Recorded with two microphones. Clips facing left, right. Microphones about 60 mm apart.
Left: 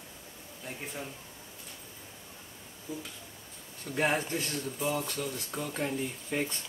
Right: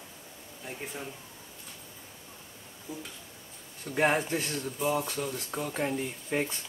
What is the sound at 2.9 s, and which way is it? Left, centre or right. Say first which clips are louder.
Speech: left 1 dB; centre.